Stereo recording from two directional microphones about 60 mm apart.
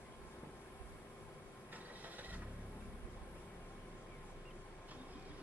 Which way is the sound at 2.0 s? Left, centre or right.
Right.